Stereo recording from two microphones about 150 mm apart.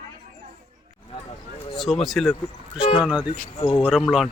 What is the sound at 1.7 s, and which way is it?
Speech, centre (ahead or behind).